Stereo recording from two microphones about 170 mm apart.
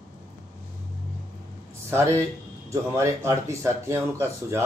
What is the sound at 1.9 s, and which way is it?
Speech, 15° right (ahead or behind).